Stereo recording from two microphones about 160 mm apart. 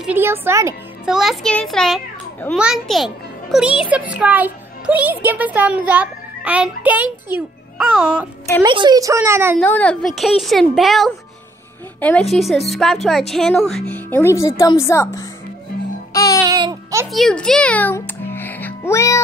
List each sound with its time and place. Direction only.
0.0 s speech: 15° right (ahead or behind)
1.0 s a child's voice: 5° right (ahead or behind)
8.6 s a child's voice: 30° right (ahead or behind)
9.6 s a woman's voice: 10° left (ahead or behind)
16.1 s music: 20° left (ahead or behind)
16.4 s a sound: 25° right (ahead or behind)
17.1 s a child's voice: 5° left (ahead or behind)